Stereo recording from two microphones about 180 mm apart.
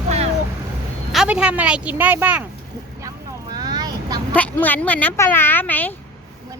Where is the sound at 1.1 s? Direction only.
5° right (ahead or behind).